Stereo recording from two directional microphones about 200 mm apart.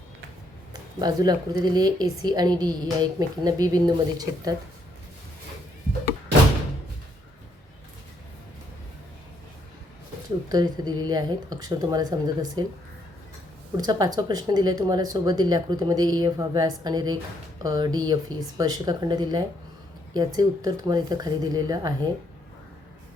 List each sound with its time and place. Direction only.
0.7 s speech: 20° right (ahead or behind)
10.5 s speech: 20° right (ahead or behind)
13.7 s speech: 20° right (ahead or behind)